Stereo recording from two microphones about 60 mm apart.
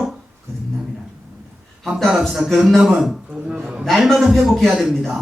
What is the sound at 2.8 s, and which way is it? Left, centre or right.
Speech, centre.